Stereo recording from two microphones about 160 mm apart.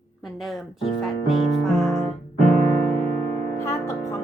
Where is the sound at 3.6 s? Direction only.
15° left (ahead or behind).